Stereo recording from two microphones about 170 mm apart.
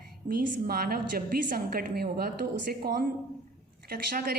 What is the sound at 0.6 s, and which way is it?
A woman's voice, 65° right (ahead or behind).